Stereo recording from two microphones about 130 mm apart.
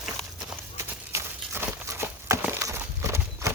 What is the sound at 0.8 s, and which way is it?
Horse, 20° right (ahead or behind).